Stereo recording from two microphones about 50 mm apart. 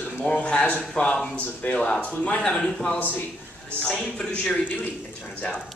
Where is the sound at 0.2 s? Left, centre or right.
Centre.